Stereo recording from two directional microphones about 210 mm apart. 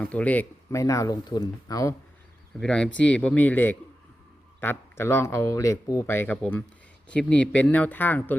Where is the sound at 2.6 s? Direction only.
5° left (ahead or behind).